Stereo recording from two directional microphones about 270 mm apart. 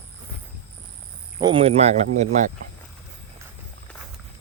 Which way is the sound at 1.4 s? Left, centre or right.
Centre.